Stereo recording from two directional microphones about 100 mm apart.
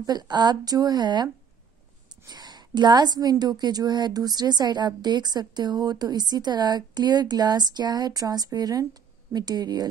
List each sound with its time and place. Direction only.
0.0 s a woman's voice: 45° right (ahead or behind)